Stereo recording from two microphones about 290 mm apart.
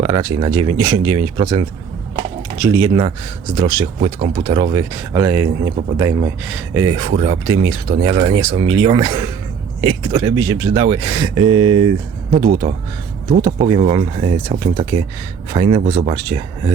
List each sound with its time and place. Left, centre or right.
0.0 s speech: centre
2.1 s a sound: centre
3.6 s speech: centre